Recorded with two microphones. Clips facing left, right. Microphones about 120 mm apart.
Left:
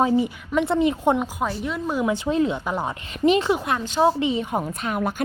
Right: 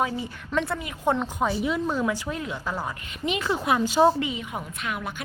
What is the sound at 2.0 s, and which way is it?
Speech, 25° left (ahead or behind).